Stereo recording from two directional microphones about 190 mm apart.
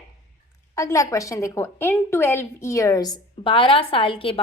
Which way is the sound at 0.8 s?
15° left (ahead or behind).